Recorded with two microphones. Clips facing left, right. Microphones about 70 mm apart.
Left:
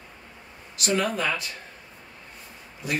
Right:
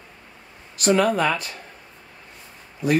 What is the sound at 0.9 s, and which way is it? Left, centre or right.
Speech, right.